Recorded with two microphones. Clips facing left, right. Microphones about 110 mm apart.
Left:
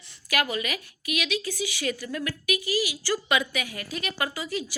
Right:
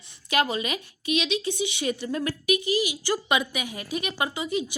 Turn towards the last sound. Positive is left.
turn(degrees=-20)  # may be behind; listen again after turning